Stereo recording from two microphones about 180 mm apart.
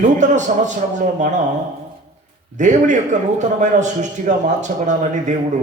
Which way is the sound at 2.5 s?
45° right (ahead or behind).